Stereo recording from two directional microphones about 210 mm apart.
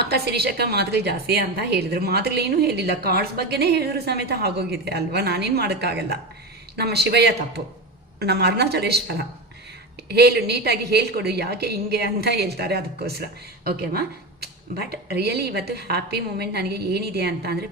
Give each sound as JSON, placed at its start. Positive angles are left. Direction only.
{"t": 0.0, "sound": "a woman's voice", "side_deg": -50}
{"t": 14.4, "sound": "a woman's voice", "side_deg": -50}